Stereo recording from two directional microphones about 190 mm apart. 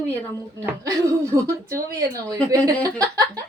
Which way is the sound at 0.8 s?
15° right (ahead or behind).